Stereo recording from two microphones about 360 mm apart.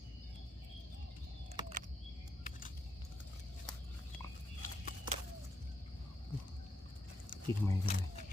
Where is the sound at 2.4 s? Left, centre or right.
Left.